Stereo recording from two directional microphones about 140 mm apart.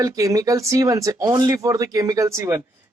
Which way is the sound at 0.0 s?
25° right (ahead or behind).